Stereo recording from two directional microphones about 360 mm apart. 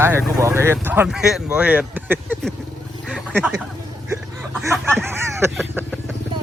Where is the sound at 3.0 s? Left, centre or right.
Centre.